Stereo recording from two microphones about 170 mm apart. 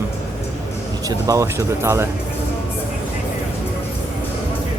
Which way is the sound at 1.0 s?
20° right (ahead or behind).